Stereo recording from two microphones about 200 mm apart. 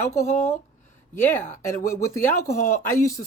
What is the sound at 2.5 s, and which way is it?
Speech, 15° left (ahead or behind).